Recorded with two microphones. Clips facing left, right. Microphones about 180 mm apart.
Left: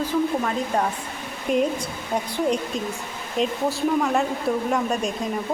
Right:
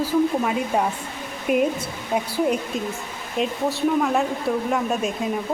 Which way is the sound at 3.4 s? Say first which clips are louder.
Even; centre (ahead or behind).